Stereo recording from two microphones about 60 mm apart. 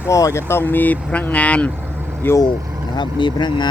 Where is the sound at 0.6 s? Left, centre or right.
Left.